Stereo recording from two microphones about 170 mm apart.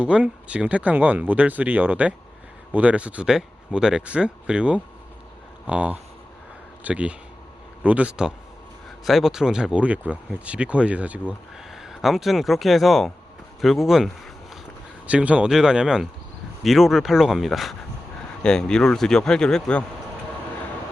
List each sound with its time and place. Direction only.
0.0 s speech: 5° right (ahead or behind)